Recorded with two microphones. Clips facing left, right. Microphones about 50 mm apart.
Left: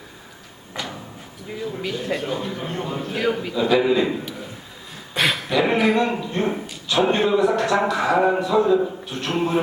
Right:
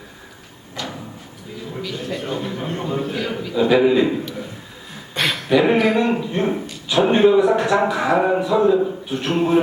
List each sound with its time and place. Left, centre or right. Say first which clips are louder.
0.8 s a sound: right 1 dB; centre
1.8 s a man's voice: even; left
2.2 s speech: right 1 dB; centre
3.2 s a man's voice: left 3 dB; left
3.5 s speech: right 5 dB; centre
5.1 s beatboxing: left 1 dB; centre
5.5 s a sound: right 8 dB; centre
5.7 s speech: right 2 dB; centre